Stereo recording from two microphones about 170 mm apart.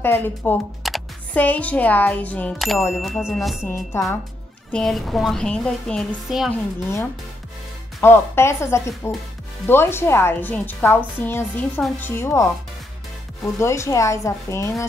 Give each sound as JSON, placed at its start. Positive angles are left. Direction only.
{"t": 0.0, "sound": "speech", "side_deg": 10}
{"t": 0.8, "sound": "music", "side_deg": 0}
{"t": 1.4, "sound": "a woman's voice", "side_deg": 10}
{"t": 3.9, "sound": "speech", "side_deg": 15}
{"t": 4.7, "sound": "a woman's voice", "side_deg": 0}
{"t": 8.0, "sound": "speech", "side_deg": 15}